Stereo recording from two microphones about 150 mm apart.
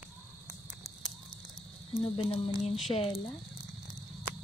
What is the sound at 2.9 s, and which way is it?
Speech, 40° left (ahead or behind).